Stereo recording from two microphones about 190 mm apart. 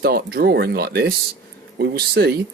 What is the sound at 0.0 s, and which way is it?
Speech, 55° right (ahead or behind).